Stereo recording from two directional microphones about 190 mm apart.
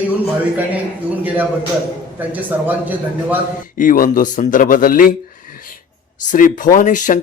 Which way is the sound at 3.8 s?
45° left (ahead or behind).